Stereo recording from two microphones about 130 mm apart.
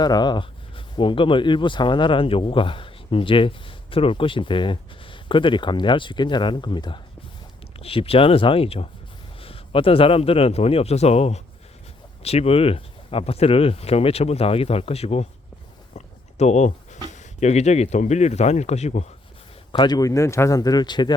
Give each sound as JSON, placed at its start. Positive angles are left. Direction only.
{"t": 0.0, "sound": "speech", "side_deg": 35}
{"t": 19.7, "sound": "speech", "side_deg": 35}